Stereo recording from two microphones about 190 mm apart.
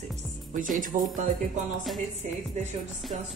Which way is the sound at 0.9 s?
40° right (ahead or behind).